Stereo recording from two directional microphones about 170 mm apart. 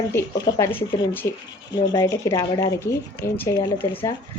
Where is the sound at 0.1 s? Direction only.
20° left (ahead or behind).